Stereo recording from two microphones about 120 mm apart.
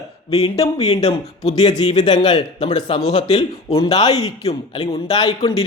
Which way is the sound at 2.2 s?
50° left (ahead or behind).